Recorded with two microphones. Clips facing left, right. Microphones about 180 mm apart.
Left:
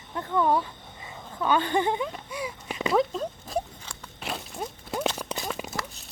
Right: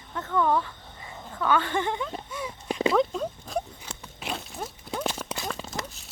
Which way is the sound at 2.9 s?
Centre (ahead or behind).